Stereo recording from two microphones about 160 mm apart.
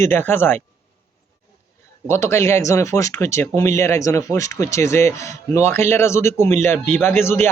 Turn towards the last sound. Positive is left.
turn(degrees=15)  # may be behind; listen again after turning